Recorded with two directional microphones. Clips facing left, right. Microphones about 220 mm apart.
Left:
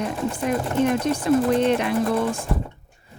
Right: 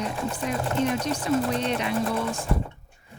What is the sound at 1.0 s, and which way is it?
Speech, 55° left (ahead or behind).